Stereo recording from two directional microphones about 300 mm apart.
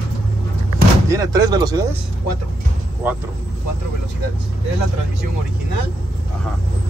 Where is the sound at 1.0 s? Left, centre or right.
Centre.